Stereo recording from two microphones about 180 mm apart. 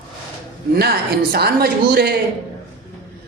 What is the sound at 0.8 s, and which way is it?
A woman's voice, 65° right (ahead or behind).